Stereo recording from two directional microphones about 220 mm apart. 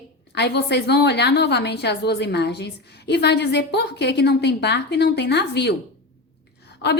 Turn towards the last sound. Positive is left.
turn(degrees=50)  # may be behind; listen again after turning